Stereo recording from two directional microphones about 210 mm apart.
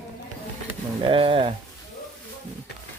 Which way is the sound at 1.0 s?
25° right (ahead or behind).